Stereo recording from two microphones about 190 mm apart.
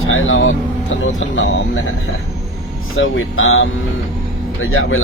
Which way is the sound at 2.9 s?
90° left.